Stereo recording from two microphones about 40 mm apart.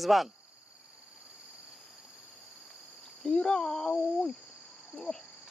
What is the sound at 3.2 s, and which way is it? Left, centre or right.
Speech, centre.